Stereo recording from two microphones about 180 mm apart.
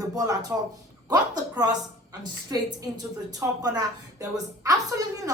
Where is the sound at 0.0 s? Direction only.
20° right (ahead or behind).